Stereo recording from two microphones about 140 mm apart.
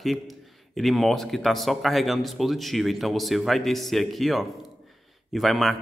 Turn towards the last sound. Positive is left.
turn(degrees=0)  # may be behind; listen again after turning